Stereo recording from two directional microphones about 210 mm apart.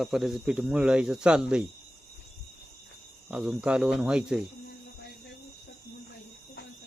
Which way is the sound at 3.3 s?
5° right (ahead or behind).